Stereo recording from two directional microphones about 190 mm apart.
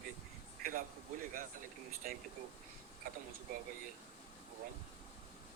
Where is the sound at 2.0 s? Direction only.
50° right (ahead or behind).